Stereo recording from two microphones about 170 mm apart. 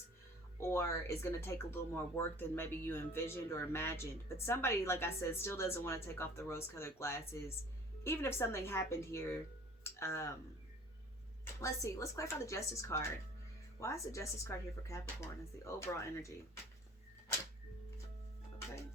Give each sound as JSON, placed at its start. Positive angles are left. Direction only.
{"t": 0.6, "sound": "speech", "side_deg": 15}
{"t": 11.6, "sound": "speech", "side_deg": 15}